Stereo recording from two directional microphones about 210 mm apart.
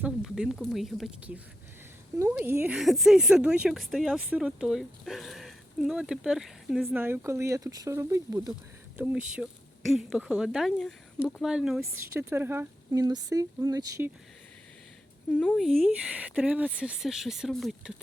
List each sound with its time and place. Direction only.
0.0 s a woman's voice: 5° right (ahead or behind)
9.3 s a woman's voice: 5° right (ahead or behind)
15.3 s a woman's voice: 5° left (ahead or behind)